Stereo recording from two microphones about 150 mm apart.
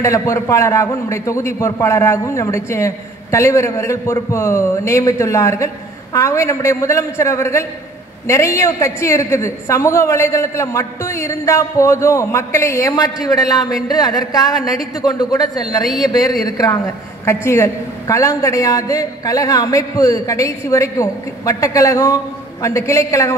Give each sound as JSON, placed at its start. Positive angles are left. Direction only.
{"t": 0.0, "sound": "a woman's voice", "side_deg": 20}
{"t": 15.8, "sound": "a man's voice", "side_deg": 0}
{"t": 16.1, "sound": "a woman's voice", "side_deg": 25}